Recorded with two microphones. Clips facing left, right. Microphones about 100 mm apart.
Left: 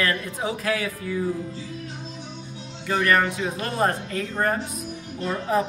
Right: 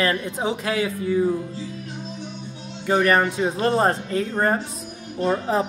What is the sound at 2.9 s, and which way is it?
Speech, 25° right (ahead or behind).